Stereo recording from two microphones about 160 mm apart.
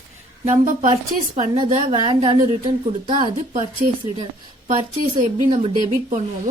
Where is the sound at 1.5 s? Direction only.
35° right (ahead or behind).